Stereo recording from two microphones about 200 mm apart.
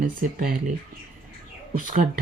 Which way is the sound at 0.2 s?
45° right (ahead or behind).